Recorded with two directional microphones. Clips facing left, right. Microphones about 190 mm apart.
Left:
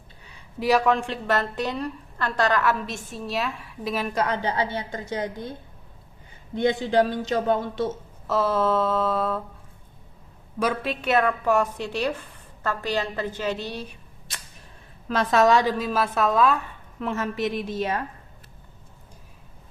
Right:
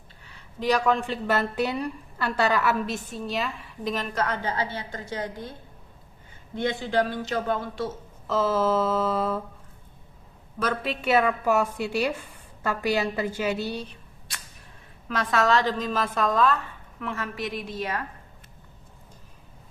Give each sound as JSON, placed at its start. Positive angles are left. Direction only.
{"t": 0.3, "sound": "a woman's voice", "side_deg": 5}
{"t": 6.6, "sound": "speech", "side_deg": 15}
{"t": 8.3, "sound": "a woman's voice", "side_deg": 0}
{"t": 10.8, "sound": "a woman's voice", "side_deg": 0}
{"t": 15.1, "sound": "a woman's voice", "side_deg": 25}
{"t": 17.0, "sound": "speech", "side_deg": 25}